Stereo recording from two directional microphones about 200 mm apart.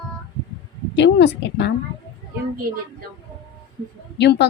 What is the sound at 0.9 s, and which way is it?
Speech, 60° left (ahead or behind).